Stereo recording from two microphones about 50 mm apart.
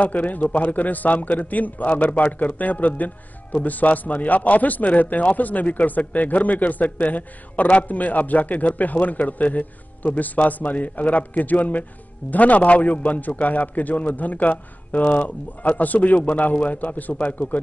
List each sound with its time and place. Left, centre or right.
0.0 s speech: left